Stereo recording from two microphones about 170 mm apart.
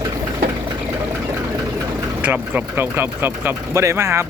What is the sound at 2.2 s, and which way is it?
Speech, 10° right (ahead or behind).